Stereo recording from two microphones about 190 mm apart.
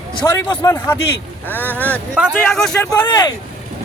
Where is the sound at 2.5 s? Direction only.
Centre (ahead or behind).